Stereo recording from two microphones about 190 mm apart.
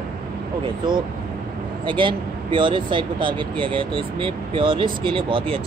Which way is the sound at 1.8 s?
25° right (ahead or behind).